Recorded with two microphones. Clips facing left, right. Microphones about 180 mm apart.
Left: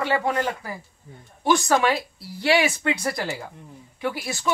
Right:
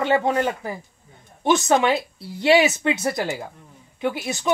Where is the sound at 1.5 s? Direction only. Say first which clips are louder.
Right 2 dB; 20° right (ahead or behind).